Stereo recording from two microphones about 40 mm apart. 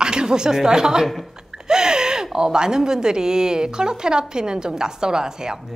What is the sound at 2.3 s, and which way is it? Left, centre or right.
A woman's voice, centre.